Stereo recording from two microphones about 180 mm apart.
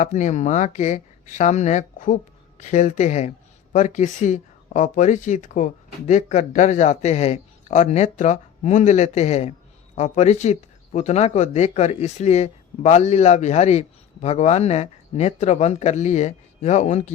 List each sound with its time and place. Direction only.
0.0 s speech: 40° left (ahead or behind)